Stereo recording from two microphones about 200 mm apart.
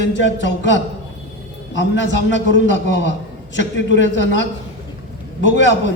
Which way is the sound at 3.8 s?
65° left (ahead or behind).